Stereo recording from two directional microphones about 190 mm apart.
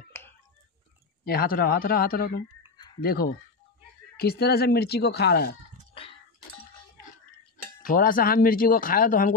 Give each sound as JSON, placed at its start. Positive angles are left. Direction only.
{"t": 1.2, "sound": "speech", "side_deg": 50}
{"t": 7.8, "sound": "speech", "side_deg": 50}